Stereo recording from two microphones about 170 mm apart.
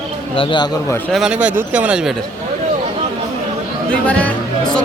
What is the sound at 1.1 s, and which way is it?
Speech, centre (ahead or behind).